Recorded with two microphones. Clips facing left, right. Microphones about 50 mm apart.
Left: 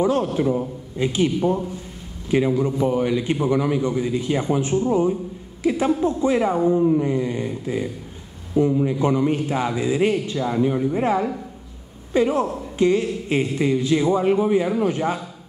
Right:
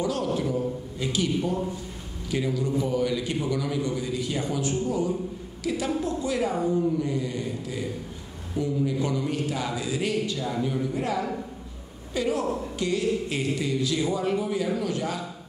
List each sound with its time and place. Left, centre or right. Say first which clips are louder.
0.0 s a man's voice: left 7 dB; left